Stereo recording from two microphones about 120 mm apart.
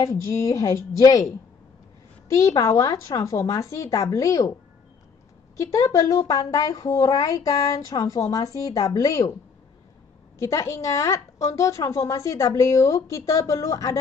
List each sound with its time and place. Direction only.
0.0 s speech: 25° left (ahead or behind)
2.2 s speech: 25° left (ahead or behind)
5.6 s speech: 25° left (ahead or behind)
10.4 s speech: 25° left (ahead or behind)